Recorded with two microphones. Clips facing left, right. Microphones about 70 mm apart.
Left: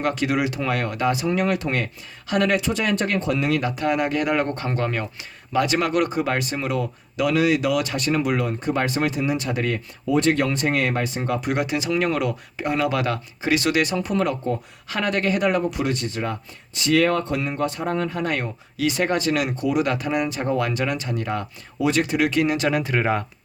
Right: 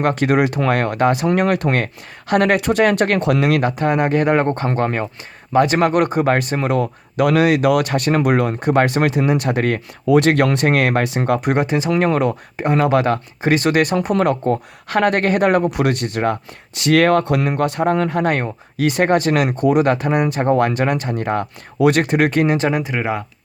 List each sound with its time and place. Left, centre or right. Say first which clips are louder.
0.0 s speech: right 6 dB; right
22.7 s speech: right 2 dB; centre
23.0 s speech: even; centre